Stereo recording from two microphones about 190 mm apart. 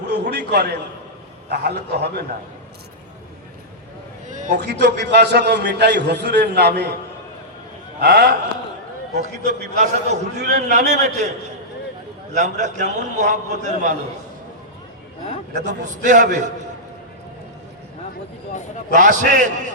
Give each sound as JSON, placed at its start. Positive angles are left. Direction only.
{"t": 0.1, "sound": "a man's voice", "side_deg": -60}
{"t": 4.3, "sound": "a sound", "side_deg": -40}
{"t": 4.5, "sound": "a man's voice", "side_deg": -60}
{"t": 8.0, "sound": "a man's voice", "side_deg": -55}
{"t": 9.4, "sound": "a man's voice", "side_deg": -40}
{"t": 12.4, "sound": "a man's voice", "side_deg": -40}
{"t": 15.5, "sound": "a man's voice", "side_deg": -40}
{"t": 18.9, "sound": "a man's voice", "side_deg": -45}